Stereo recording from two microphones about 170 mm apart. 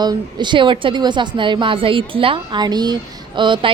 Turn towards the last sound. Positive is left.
turn(degrees=-30)  # may be behind; listen again after turning